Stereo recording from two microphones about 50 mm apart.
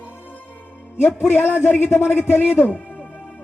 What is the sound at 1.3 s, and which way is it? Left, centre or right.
Speech, left.